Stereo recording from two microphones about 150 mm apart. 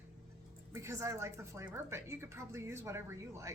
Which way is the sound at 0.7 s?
20° right (ahead or behind).